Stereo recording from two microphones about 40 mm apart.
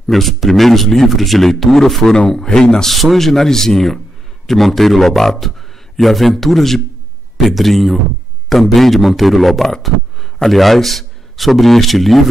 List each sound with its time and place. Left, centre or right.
0.1 s a man's voice: centre
2.9 s a man's voice: centre